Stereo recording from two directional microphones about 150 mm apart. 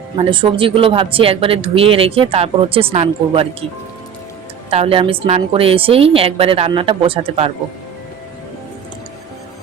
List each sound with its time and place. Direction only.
0.2 s speech: 35° right (ahead or behind)
4.7 s speech: 40° right (ahead or behind)